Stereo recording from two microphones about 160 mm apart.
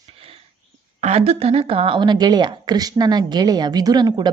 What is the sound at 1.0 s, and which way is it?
Speech, 40° right (ahead or behind).